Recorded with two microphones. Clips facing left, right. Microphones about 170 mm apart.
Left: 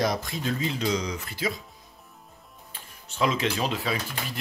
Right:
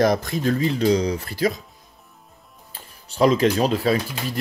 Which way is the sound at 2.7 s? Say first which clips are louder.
Right 4 dB; 35° right (ahead or behind).